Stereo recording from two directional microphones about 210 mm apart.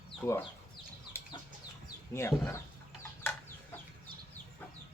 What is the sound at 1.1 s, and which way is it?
Chicken, 10° left (ahead or behind).